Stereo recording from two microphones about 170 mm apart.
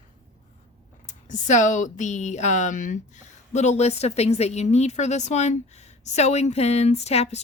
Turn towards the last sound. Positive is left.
turn(degrees=40)  # may be behind; listen again after turning